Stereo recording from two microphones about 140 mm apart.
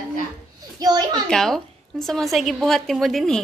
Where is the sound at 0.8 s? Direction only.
25° right (ahead or behind).